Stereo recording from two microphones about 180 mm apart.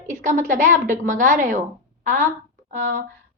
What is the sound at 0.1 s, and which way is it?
A woman's voice, 45° right (ahead or behind).